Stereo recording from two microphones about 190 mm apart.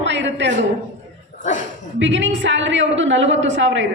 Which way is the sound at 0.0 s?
75° right (ahead or behind).